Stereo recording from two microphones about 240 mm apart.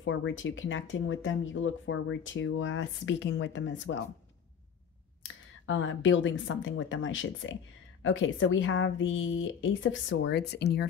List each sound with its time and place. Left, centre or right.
0.0 s speech: left
5.7 s speech: left